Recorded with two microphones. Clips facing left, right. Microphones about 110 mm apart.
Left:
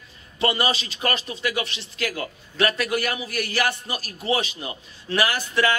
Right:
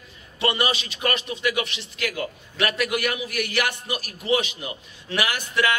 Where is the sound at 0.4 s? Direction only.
35° left (ahead or behind).